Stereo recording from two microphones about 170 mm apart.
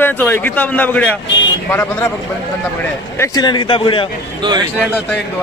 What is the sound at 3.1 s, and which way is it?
Speech, 20° left (ahead or behind).